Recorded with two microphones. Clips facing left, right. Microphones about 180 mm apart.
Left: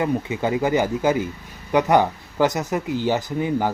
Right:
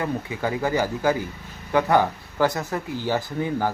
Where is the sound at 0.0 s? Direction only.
20° left (ahead or behind).